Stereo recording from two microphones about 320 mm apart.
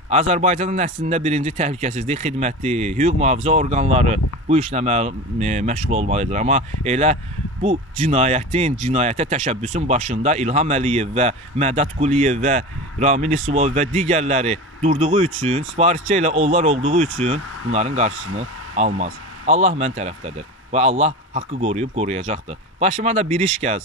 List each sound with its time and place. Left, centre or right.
0.1 s speech: centre
18.1 s speech: right
18.8 s speech: right